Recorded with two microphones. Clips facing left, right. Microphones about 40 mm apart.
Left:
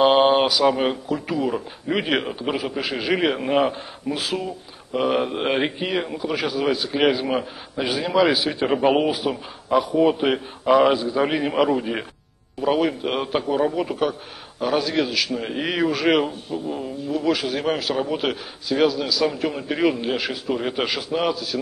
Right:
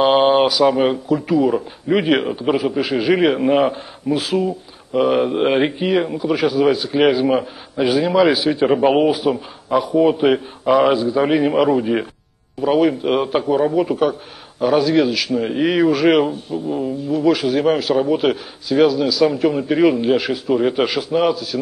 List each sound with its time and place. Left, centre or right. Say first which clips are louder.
0.0 s a man's voice: right 3 dB; centre